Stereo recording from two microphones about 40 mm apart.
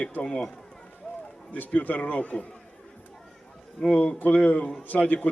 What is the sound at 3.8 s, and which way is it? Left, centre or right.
Speech, left.